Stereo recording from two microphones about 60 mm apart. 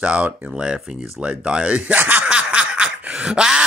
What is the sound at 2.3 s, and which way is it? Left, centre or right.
Snicker, centre.